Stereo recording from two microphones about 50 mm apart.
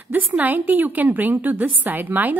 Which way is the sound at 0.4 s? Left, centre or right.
Right.